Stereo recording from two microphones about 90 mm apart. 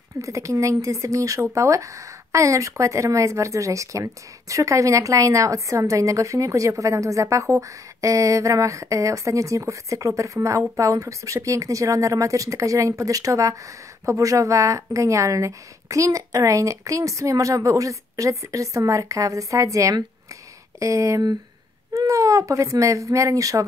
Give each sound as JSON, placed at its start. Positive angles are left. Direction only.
{"t": 0.2, "sound": "speech", "side_deg": -35}